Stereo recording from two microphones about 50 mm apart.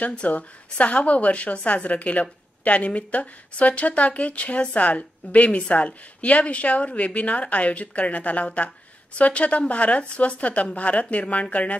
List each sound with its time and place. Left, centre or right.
0.0 s speech: left